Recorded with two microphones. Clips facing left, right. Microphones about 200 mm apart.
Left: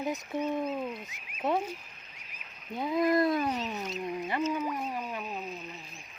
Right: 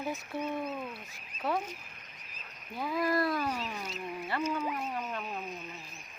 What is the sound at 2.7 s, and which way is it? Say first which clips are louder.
Speech: left 4 dB; 20° left (ahead or behind).